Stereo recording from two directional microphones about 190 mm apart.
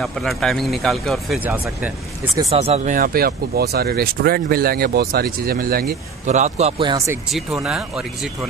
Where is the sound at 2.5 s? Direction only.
30° right (ahead or behind); by 5.9 s 50° right (ahead or behind).